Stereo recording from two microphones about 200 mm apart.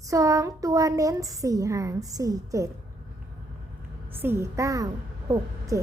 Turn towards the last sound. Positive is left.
turn(degrees=-15)  # may be behind; listen again after turning